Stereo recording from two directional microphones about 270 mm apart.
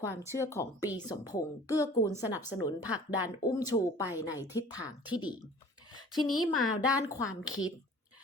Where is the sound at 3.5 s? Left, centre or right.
Centre.